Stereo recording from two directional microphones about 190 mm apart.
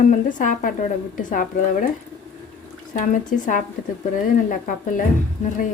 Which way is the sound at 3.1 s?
40° left (ahead or behind).